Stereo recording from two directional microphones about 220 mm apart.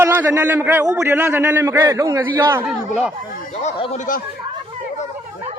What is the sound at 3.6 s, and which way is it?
Speech, 30° left (ahead or behind).